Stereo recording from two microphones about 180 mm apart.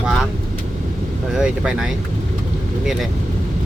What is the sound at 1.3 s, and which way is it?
Speech, 5° right (ahead or behind).